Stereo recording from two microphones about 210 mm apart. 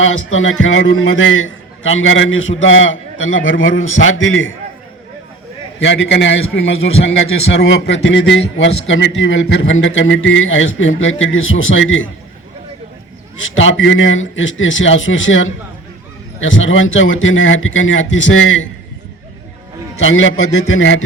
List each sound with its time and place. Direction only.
0.0 s a man's voice: 70° left (ahead or behind)
5.8 s a man's voice: 60° left (ahead or behind)
13.4 s a man's voice: 65° left (ahead or behind)
20.0 s a man's voice: 65° left (ahead or behind)